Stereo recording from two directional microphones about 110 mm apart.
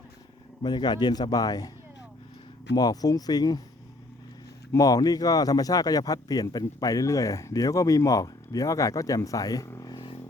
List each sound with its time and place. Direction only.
0.6 s speech: 40° left (ahead or behind)
2.7 s speech: 35° left (ahead or behind)
4.7 s speech: 35° left (ahead or behind)
9.9 s a sound: 50° left (ahead or behind)